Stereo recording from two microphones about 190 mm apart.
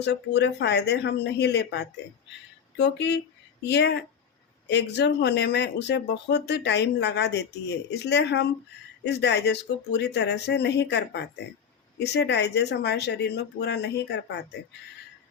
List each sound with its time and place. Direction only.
0.0 s speech: 65° left (ahead or behind)